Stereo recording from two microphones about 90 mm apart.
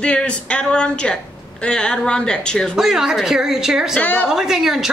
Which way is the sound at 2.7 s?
5° right (ahead or behind).